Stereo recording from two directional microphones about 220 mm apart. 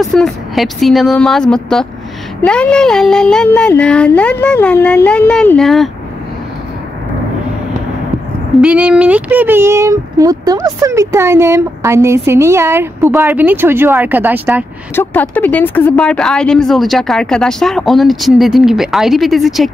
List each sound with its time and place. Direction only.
0.0 s speech: centre (ahead or behind)
8.5 s speech: 5° right (ahead or behind)
15.0 s speech: 10° left (ahead or behind)